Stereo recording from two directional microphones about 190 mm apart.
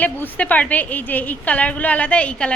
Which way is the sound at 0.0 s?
10° left (ahead or behind).